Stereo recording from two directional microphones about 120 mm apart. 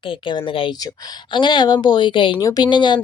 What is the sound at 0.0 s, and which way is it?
Speech, 45° left (ahead or behind).